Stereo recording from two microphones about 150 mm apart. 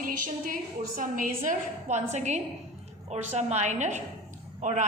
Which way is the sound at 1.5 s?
50° right (ahead or behind).